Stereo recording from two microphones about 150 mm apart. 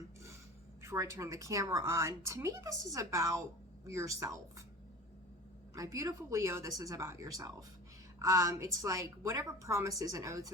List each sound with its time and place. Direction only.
0.8 s a woman's voice: 20° right (ahead or behind)
5.7 s a woman's voice: 20° right (ahead or behind)